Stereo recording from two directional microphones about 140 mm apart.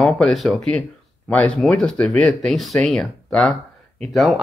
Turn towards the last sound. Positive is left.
turn(degrees=0)  # may be behind; listen again after turning